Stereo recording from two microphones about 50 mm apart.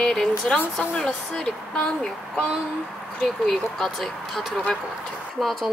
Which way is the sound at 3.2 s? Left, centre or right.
Centre.